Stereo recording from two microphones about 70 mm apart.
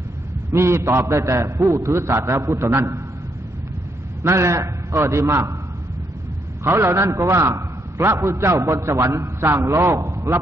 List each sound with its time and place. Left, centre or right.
0.5 s a man's voice: right
4.2 s a man's voice: right
6.6 s a man's voice: right